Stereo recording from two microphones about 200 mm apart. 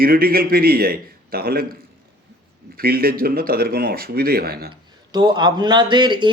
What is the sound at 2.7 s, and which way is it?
Speech, 50° right (ahead or behind).